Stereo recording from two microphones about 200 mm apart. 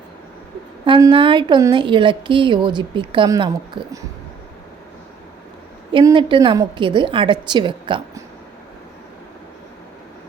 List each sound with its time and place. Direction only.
0.9 s a woman's voice: 25° right (ahead or behind)
5.9 s a woman's voice: 25° right (ahead or behind)